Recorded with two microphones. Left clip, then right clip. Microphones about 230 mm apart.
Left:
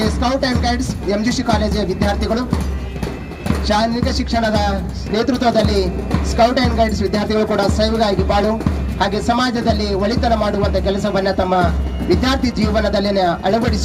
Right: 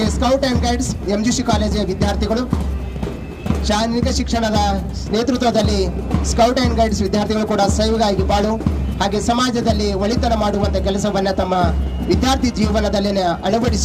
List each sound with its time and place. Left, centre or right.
0.0 s speech: right
3.7 s speech: right